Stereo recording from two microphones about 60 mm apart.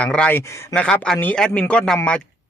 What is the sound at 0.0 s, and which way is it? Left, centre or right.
A man's voice, centre.